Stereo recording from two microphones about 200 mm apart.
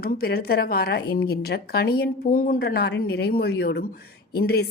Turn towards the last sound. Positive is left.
turn(degrees=55)  # may be behind; listen again after turning